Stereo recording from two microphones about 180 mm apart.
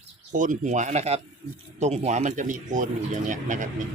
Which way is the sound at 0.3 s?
45° right (ahead or behind).